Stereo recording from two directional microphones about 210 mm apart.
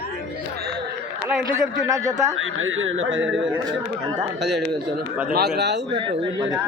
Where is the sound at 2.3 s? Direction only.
70° right (ahead or behind).